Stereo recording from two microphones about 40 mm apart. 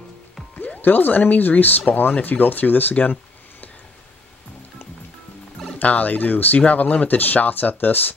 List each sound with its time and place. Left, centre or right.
0.8 s speech: left
5.8 s speech: left